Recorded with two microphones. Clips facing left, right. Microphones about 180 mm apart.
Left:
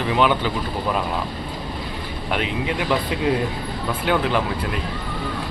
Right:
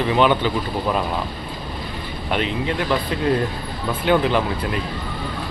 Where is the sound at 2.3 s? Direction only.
10° left (ahead or behind).